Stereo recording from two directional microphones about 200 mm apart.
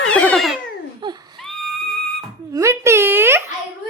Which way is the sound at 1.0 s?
25° right (ahead or behind).